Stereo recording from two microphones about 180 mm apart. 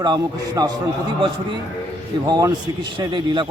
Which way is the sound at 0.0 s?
20° right (ahead or behind).